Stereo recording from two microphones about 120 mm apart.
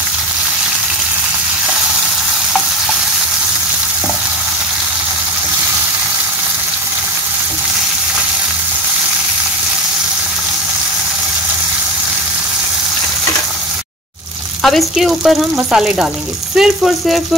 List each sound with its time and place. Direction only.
14.6 s frying: centre (ahead or behind)
15.5 s speech: 5° right (ahead or behind)
16.5 s frying: 5° right (ahead or behind)